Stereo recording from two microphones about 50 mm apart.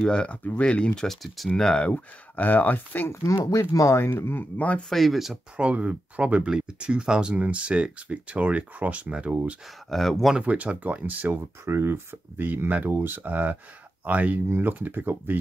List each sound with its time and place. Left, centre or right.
0.0 s speech: centre
1.0 s speech: centre
1.6 s speech: centre
1.9 s speech: left
3.1 s speech: left
4.3 s speech: left
4.8 s speech: centre
5.6 s speech: right
9.8 s speech: centre
10.4 s speech: right
11.6 s speech: right
12.4 s speech: right